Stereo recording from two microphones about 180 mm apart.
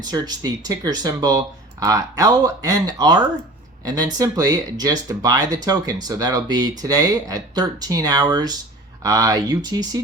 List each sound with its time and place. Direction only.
0.0 s speech: 25° right (ahead or behind)